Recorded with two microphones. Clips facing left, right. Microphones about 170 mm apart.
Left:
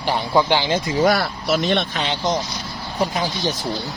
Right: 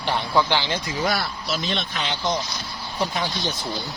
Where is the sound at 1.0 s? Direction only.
55° left (ahead or behind).